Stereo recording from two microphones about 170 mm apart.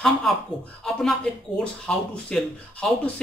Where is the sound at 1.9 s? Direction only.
5° left (ahead or behind).